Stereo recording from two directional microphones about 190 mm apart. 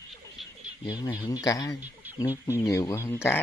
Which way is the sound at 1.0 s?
20° left (ahead or behind).